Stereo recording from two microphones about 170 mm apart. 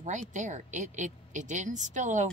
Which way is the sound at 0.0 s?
45° right (ahead or behind).